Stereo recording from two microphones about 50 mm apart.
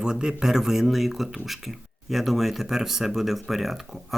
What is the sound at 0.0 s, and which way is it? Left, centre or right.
Speech, centre.